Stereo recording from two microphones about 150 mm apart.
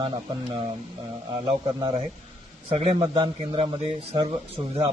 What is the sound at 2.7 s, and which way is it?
A man's voice, 35° right (ahead or behind).